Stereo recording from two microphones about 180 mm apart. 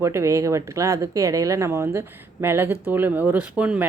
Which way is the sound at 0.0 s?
15° right (ahead or behind).